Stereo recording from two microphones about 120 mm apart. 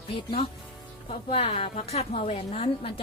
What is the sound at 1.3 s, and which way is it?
A woman's voice, 55° left (ahead or behind).